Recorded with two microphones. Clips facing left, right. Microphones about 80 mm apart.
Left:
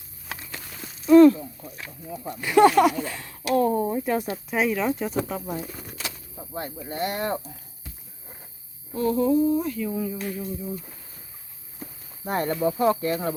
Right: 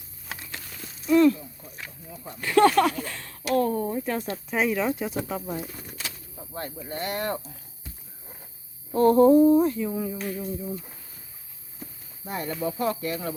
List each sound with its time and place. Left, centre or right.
1.0 s snake: left
2.4 s speech: centre
4.4 s speech: centre
6.3 s speech: centre
8.9 s humming: right
9.7 s speech: centre
11.8 s a sound: left
12.5 s speech: left